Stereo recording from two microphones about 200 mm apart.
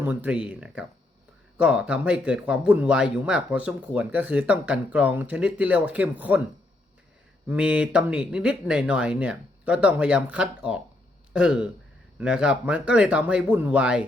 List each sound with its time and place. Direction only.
0.0 s speech: 10° right (ahead or behind)
7.4 s speech: 5° right (ahead or behind)